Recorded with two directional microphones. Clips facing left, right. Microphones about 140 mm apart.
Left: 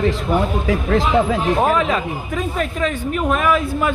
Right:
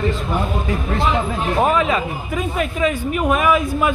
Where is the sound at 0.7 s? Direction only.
90° left.